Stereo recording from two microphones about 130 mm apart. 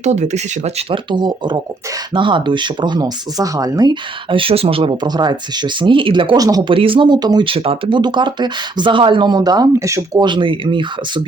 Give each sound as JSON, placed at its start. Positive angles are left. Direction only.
{"t": 0.0, "sound": "speech", "side_deg": -60}
{"t": 1.1, "sound": "speech", "side_deg": -35}
{"t": 6.3, "sound": "speech", "side_deg": -30}
{"t": 6.7, "sound": "speech", "side_deg": -40}
{"t": 10.2, "sound": "speech", "side_deg": -40}